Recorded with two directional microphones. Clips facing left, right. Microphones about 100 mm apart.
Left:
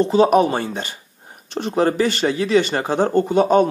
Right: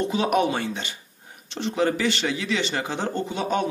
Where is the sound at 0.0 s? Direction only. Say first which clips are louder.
Left 8 dB; 35° left (ahead or behind).